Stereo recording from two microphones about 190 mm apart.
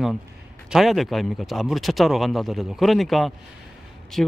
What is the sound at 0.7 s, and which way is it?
Speech, centre (ahead or behind).